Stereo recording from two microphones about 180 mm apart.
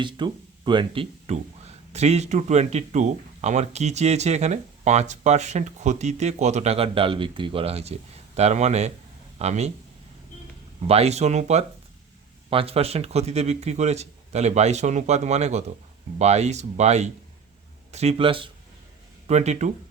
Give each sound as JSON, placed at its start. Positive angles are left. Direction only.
{"t": 0.0, "sound": "speech", "side_deg": -25}
{"t": 10.8, "sound": "speech", "side_deg": -35}